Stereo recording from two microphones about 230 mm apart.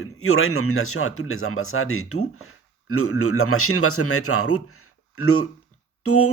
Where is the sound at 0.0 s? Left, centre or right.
Left.